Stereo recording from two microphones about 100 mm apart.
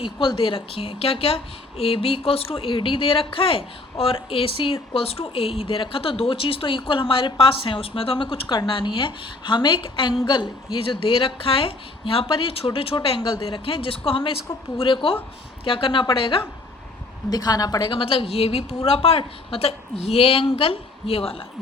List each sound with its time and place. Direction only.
0.0 s a woman's voice: 60° left (ahead or behind)
17.2 s a woman's voice: 40° left (ahead or behind); by 21.4 s 75° left (ahead or behind)